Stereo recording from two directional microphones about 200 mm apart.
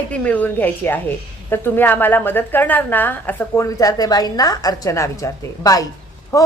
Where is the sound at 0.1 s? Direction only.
5° left (ahead or behind).